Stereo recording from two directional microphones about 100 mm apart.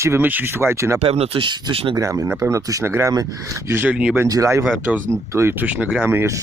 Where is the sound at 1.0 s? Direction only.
75° right (ahead or behind).